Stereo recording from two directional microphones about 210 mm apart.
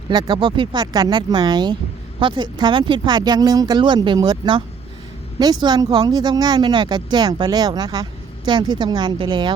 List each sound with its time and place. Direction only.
0.1 s speech: 20° right (ahead or behind)